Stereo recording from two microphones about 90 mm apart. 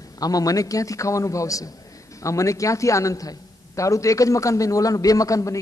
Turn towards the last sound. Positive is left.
turn(degrees=35)  # may be behind; listen again after turning